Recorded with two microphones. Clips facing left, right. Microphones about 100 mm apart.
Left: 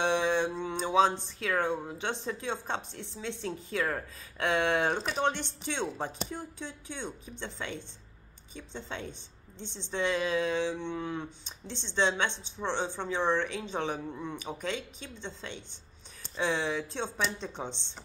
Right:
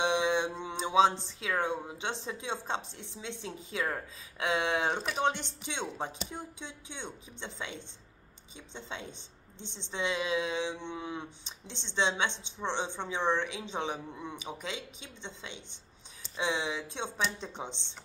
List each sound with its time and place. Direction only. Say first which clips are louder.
0.0 s mantra: left 1 dB; 15° right (ahead or behind)
1.4 s speech: left 2 dB; 15° right (ahead or behind)
8.7 s speech: left 2 dB; 20° right (ahead or behind)
14.6 s speech: left 7 dB; 50° left (ahead or behind)
15.0 s speech: left 4 dB; 20° right (ahead or behind)